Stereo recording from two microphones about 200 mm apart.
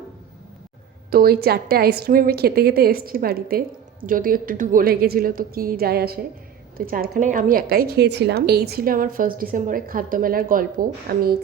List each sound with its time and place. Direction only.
1.1 s a woman's voice: 50° right (ahead or behind)